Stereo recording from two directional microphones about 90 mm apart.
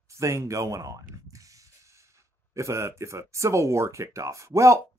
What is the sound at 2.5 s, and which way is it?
Speech, 30° right (ahead or behind).